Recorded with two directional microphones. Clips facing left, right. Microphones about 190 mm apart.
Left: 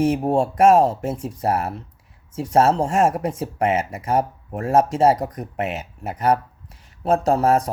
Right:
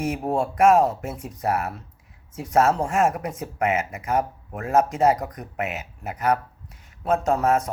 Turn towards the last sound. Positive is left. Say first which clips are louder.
# left 3 dB
turn(degrees=35)  # may be behind; listen again after turning